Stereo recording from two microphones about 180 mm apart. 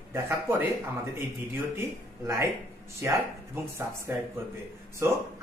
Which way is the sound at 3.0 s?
15° right (ahead or behind).